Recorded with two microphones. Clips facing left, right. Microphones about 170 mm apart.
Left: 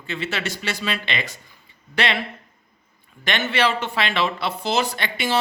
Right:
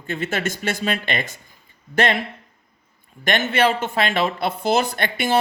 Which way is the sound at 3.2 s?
50° right (ahead or behind).